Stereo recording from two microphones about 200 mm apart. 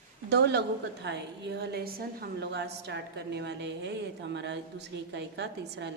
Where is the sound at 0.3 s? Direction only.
60° right (ahead or behind).